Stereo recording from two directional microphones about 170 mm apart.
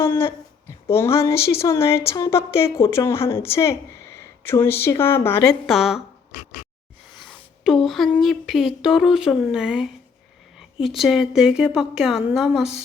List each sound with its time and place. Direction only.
0.0 s a sound: 15° left (ahead or behind)
0.9 s speech: 15° left (ahead or behind)
5.6 s a woman's voice: centre (ahead or behind)
7.6 s a woman's voice: centre (ahead or behind)